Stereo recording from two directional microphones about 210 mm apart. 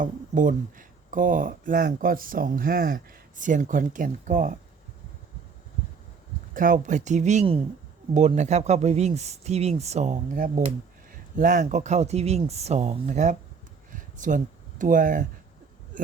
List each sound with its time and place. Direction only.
0.0 s speech: 40° right (ahead or behind)
6.5 s speech: 40° right (ahead or behind)
13.9 s a sound: 40° right (ahead or behind)